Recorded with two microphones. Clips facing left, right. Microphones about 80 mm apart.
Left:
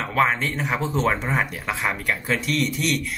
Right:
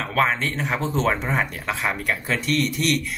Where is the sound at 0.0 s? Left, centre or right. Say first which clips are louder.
Left 1 dB; centre.